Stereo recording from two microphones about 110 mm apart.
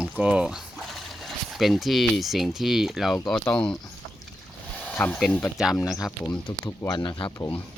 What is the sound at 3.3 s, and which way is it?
Speech, 10° left (ahead or behind).